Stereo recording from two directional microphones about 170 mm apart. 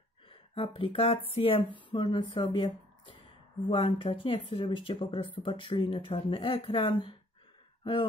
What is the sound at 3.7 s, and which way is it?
Speech, 35° left (ahead or behind).